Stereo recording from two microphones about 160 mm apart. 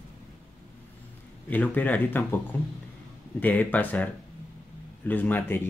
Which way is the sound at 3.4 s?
10° left (ahead or behind).